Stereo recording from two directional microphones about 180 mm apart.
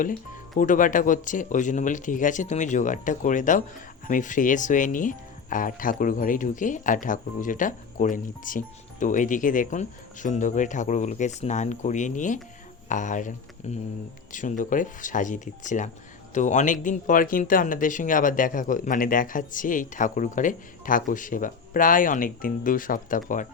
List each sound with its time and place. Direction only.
0.5 s speech: 45° left (ahead or behind)